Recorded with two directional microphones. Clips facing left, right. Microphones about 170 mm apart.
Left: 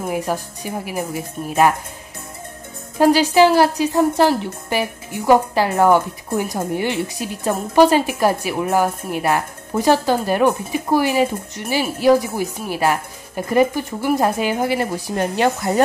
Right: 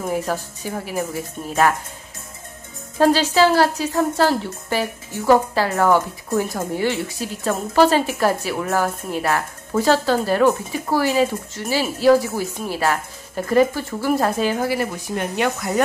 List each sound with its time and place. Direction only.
0.1 s a woman's voice: 15° left (ahead or behind)
3.0 s a woman's voice: 15° left (ahead or behind)
15.1 s speech: 30° left (ahead or behind)